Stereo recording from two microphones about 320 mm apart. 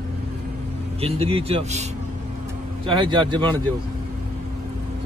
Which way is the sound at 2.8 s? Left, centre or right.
Centre.